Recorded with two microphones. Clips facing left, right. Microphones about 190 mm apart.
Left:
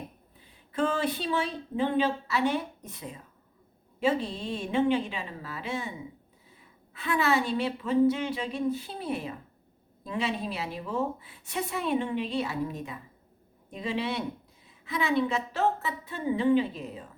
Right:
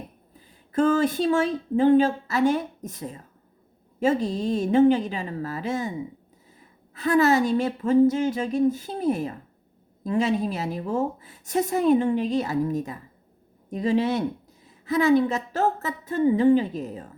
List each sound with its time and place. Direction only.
0.7 s a woman's voice: 45° right (ahead or behind)
6.9 s a woman's voice: 40° right (ahead or behind)